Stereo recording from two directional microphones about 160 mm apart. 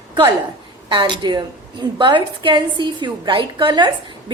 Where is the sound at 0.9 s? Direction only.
30° right (ahead or behind).